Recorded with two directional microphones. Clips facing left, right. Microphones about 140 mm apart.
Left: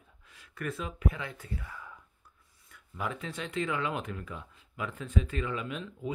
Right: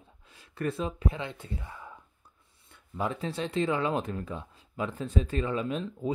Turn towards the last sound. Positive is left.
turn(degrees=-35)  # may be behind; listen again after turning